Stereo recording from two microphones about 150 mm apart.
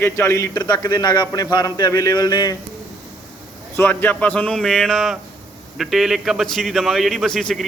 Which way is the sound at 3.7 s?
10° left (ahead or behind).